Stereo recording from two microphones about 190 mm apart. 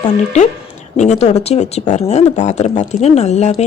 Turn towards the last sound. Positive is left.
turn(degrees=35)  # may be behind; listen again after turning